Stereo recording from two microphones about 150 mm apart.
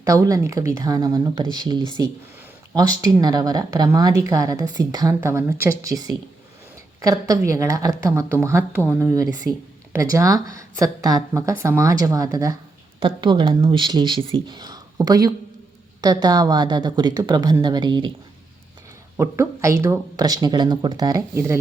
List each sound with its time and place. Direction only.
0.0 s speech: 20° right (ahead or behind)
13.0 s speech: 35° right (ahead or behind)
19.1 s speech: 15° right (ahead or behind)